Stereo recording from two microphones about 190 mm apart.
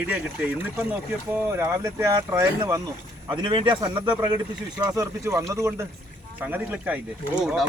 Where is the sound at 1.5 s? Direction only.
15° right (ahead or behind).